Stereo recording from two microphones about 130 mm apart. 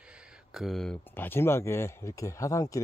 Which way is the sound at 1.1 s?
15° left (ahead or behind).